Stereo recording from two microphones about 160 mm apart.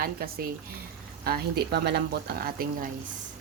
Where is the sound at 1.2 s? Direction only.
80° right.